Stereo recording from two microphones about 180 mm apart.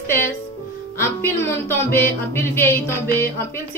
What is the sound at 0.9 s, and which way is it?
Music, 15° left (ahead or behind).